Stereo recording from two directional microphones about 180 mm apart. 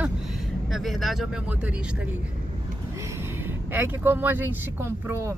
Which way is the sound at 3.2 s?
10° right (ahead or behind).